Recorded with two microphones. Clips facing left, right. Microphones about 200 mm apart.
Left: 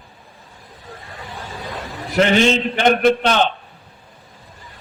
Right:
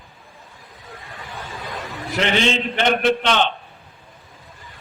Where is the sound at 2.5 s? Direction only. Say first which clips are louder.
Left 4 dB; 45° left (ahead or behind).